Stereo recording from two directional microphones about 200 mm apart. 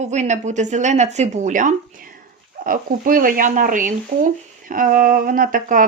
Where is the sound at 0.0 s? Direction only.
35° right (ahead or behind).